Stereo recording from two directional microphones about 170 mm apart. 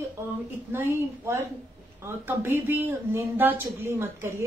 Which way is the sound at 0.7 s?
15° right (ahead or behind).